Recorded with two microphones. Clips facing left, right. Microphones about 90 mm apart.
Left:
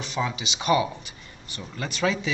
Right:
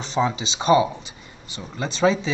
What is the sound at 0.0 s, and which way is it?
Speech, 30° right (ahead or behind).